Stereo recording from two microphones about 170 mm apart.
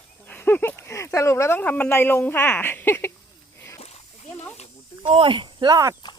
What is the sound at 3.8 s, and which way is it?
Splash, 40° left (ahead or behind).